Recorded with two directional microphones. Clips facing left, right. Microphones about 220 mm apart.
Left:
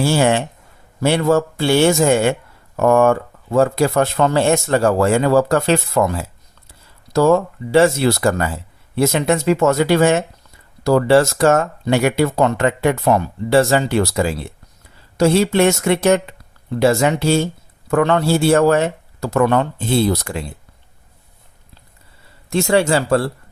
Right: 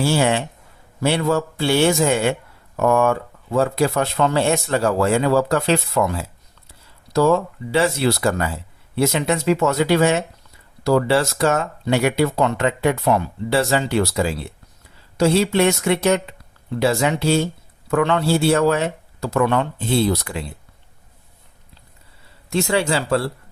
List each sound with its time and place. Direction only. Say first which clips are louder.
0.0 s speech: left 3 dB; 50° left (ahead or behind)
22.4 s speech: left 4 dB; 50° left (ahead or behind)